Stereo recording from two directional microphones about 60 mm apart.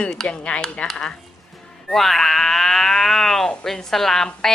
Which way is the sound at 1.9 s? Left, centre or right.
Centre.